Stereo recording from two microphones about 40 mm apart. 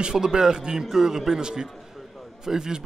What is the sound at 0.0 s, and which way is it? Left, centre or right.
A man's voice, centre.